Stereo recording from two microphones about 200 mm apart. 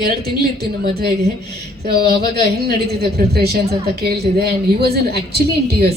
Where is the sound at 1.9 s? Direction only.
55° right (ahead or behind).